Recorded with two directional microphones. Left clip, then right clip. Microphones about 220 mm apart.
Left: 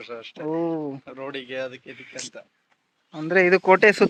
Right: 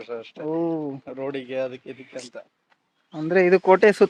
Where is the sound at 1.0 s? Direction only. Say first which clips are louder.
Right 3 dB; 40° right (ahead or behind).